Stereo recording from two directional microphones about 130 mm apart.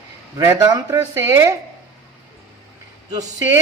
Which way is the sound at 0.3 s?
30° right (ahead or behind).